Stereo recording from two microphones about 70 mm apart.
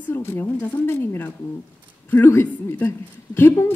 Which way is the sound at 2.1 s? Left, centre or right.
Left.